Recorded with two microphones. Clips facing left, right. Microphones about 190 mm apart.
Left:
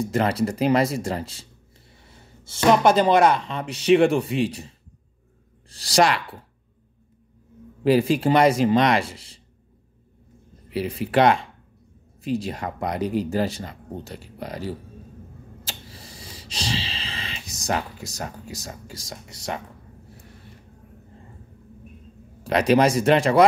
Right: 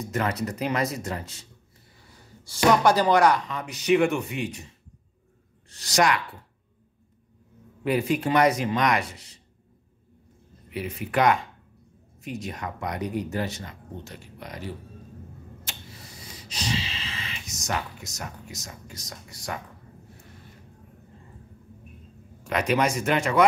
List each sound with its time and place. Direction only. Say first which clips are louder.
0.0 s speech: left 6 dB; 30° left (ahead or behind)
5.7 s speech: left 3 dB; 30° left (ahead or behind)
7.8 s speech: left 6 dB; 30° left (ahead or behind)
10.7 s speech: left 6 dB; 30° left (ahead or behind)
15.6 s a sound: left 6 dB; 30° left (ahead or behind)
22.4 s speech: left 6 dB; 35° left (ahead or behind)